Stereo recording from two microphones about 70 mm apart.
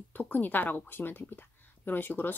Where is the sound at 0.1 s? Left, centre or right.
Left.